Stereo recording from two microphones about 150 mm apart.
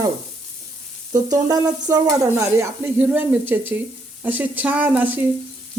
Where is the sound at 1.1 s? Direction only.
25° right (ahead or behind).